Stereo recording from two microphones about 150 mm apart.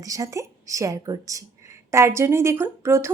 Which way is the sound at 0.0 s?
20° right (ahead or behind).